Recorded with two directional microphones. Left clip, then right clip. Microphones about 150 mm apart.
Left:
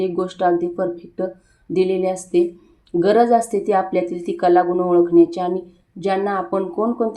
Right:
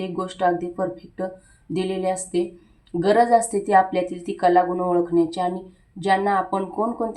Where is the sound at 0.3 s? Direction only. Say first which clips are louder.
Left 2 dB; 25° left (ahead or behind).